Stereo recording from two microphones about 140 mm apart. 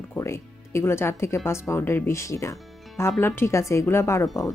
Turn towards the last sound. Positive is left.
turn(degrees=20)  # may be behind; listen again after turning